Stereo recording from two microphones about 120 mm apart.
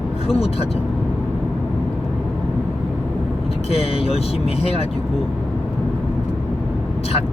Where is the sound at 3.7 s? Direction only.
55° left (ahead or behind).